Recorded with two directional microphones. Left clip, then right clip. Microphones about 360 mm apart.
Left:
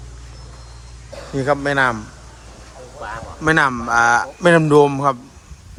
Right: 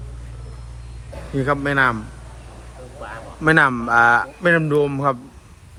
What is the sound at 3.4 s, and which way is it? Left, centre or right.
A man's voice, centre.